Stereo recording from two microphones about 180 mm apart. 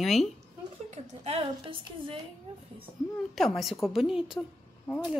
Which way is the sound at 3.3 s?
Centre (ahead or behind).